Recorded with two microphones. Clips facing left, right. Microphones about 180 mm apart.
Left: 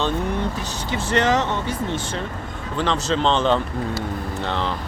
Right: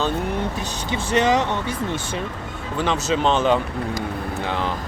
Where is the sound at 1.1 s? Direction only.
15° right (ahead or behind).